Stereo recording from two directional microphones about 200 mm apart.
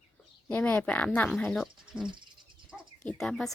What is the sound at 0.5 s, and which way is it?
Speech, 5° left (ahead or behind).